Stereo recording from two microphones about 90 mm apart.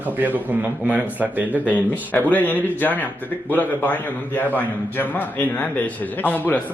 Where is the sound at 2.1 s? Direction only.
20° left (ahead or behind).